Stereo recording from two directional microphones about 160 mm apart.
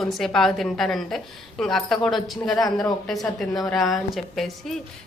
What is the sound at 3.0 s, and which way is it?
Speech, centre (ahead or behind).